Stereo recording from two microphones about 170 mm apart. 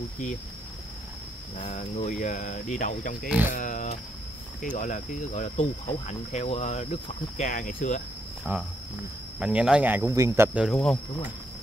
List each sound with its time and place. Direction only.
1.7 s cricket: 45° left (ahead or behind)
3.3 s speech: 10° right (ahead or behind)
3.5 s cricket: 45° left (ahead or behind)
8.5 s speech: 10° right (ahead or behind)
10.7 s speech: 5° left (ahead or behind)